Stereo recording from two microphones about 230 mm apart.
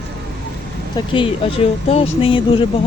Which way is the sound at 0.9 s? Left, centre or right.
Left.